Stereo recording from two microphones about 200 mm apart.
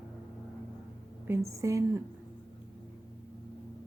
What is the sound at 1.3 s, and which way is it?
Speech, 15° right (ahead or behind).